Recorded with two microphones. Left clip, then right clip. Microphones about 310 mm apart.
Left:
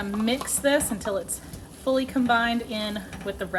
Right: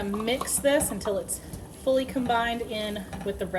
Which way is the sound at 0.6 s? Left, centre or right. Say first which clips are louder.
Left 1 dB; left.